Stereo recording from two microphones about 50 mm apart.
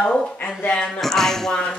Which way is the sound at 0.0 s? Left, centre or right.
Centre.